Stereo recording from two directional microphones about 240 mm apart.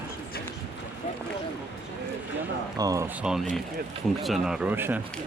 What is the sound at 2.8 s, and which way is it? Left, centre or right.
Speech, centre.